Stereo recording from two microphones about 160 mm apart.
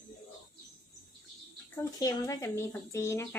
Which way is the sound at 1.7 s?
20° left (ahead or behind).